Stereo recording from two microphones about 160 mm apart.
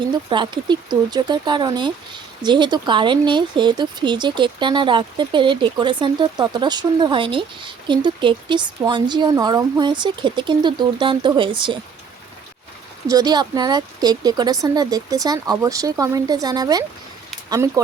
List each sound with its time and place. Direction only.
0.3 s speech: 30° right (ahead or behind)
13.1 s speech: 25° right (ahead or behind)